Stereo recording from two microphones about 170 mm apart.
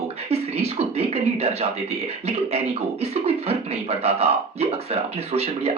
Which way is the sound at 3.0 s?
35° right (ahead or behind).